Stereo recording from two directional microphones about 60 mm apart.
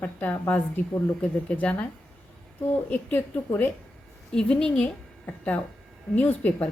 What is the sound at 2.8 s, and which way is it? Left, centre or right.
Speech, left.